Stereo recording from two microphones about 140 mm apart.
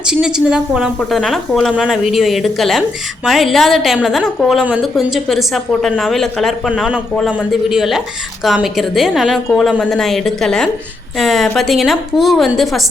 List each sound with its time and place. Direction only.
0.0 s a woman's voice: 5° right (ahead or behind)
11.2 s a sound: centre (ahead or behind)
11.5 s a woman's voice: centre (ahead or behind)